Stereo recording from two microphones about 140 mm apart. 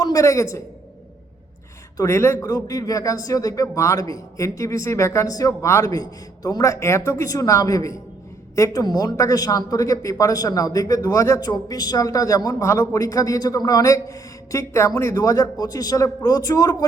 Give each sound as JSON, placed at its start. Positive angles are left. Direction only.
{"t": 0.0, "sound": "a woman's voice", "side_deg": 25}
{"t": 2.0, "sound": "speech", "side_deg": 20}